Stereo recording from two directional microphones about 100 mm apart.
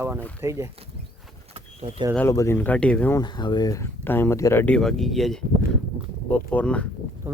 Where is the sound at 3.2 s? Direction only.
45° left (ahead or behind).